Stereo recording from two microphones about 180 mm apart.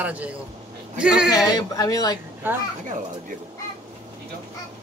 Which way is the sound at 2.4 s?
10° right (ahead or behind).